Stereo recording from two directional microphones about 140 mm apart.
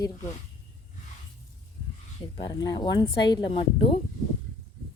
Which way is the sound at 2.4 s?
35° left (ahead or behind).